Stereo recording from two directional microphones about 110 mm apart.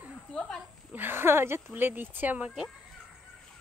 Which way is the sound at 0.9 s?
20° right (ahead or behind).